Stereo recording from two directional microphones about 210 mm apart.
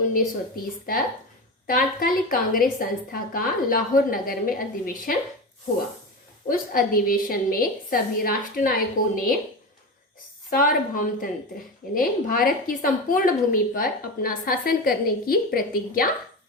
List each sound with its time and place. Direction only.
0.1 s a woman's voice: 45° left (ahead or behind)
6.5 s a woman's voice: 40° left (ahead or behind)
10.5 s a woman's voice: 40° left (ahead or behind)